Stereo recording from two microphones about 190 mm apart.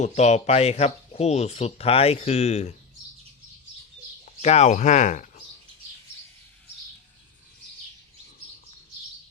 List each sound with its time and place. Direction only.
0.0 s speech: 35° left (ahead or behind)
4.4 s speech: 35° left (ahead or behind)